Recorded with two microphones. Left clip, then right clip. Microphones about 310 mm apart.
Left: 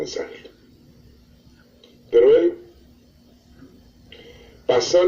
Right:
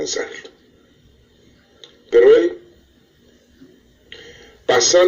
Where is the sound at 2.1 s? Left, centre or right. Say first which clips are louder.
Right 3 dB; right.